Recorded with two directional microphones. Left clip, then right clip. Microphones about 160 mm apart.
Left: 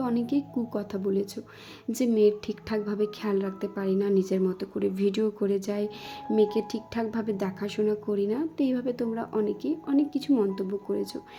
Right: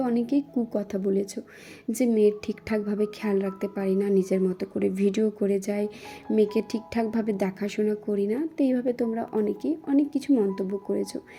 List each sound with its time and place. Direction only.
0.0 s speech: 5° right (ahead or behind)